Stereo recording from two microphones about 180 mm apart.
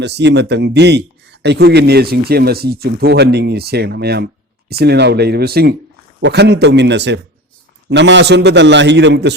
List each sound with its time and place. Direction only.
0.0 s speech: 70° right (ahead or behind)
6.1 s a man's voice: 75° right (ahead or behind)